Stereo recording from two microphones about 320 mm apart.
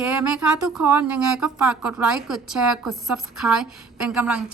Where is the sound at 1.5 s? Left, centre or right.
Centre.